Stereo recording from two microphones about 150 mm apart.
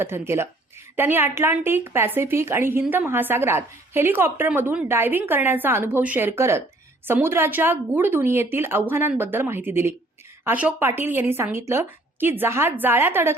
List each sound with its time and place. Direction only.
0.0 s a woman's voice: 15° right (ahead or behind)